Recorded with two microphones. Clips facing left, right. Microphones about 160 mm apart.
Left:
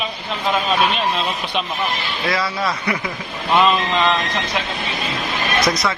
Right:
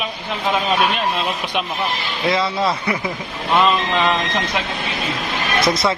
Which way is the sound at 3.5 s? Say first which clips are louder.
Even; centre (ahead or behind).